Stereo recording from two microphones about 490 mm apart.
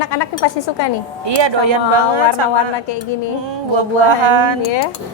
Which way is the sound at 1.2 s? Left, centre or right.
Right.